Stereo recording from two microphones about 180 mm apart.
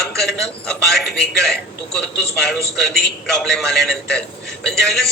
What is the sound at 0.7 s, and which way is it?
A man's voice, centre (ahead or behind).